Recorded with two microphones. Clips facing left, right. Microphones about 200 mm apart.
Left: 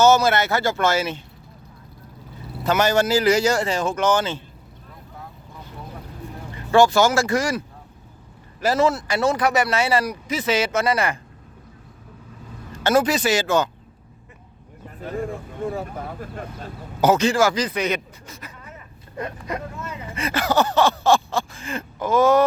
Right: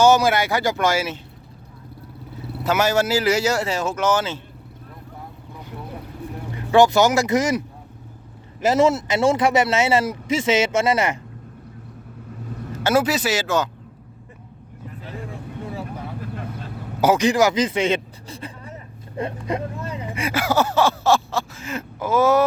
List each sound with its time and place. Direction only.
0.0 s speech: 15° right (ahead or behind)
2.6 s speech: 5° right (ahead or behind)
6.7 s speech: 20° right (ahead or behind)
8.6 s speech: 20° right (ahead or behind)
12.8 s speech: 5° right (ahead or behind)
14.8 s vehicle: 45° left (ahead or behind)
17.0 s a sound: 10° right (ahead or behind); by 20.1 s 35° right (ahead or behind)
20.1 s a sound: 10° right (ahead or behind)